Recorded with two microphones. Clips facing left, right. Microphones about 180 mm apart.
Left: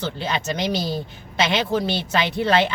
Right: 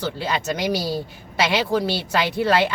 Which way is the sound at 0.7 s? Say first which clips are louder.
Right 2 dB; 20° left (ahead or behind).